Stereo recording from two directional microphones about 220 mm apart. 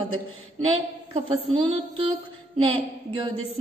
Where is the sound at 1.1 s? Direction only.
25° right (ahead or behind).